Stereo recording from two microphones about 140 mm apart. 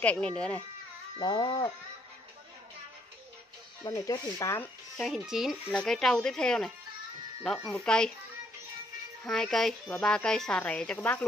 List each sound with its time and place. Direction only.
0.0 s speech: 10° left (ahead or behind)
1.2 s speech: 30° left (ahead or behind)
3.9 s speech: 20° left (ahead or behind)
5.0 s speech: centre (ahead or behind)
9.2 s speech: 5° left (ahead or behind)